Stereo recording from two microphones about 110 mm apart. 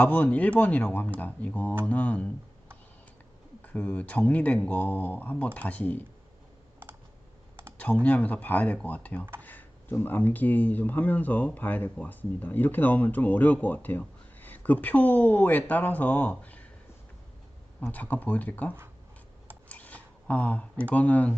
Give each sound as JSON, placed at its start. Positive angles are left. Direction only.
{"t": 0.0, "sound": "speech", "side_deg": 15}
{"t": 3.6, "sound": "speech", "side_deg": 10}
{"t": 8.0, "sound": "speech", "side_deg": 15}
{"t": 17.7, "sound": "speech", "side_deg": 15}
{"t": 19.6, "sound": "a sound", "side_deg": 15}
{"t": 20.9, "sound": "speech", "side_deg": 15}